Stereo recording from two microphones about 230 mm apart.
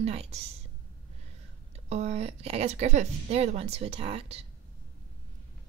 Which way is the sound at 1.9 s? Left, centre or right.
Right.